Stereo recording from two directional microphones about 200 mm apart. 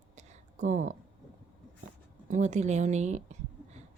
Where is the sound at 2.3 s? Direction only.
35° right (ahead or behind).